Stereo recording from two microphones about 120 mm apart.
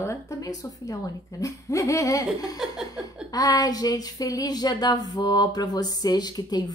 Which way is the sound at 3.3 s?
30° left (ahead or behind).